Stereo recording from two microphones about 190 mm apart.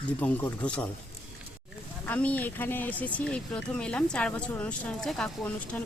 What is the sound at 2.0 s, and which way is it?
Speech, 10° left (ahead or behind).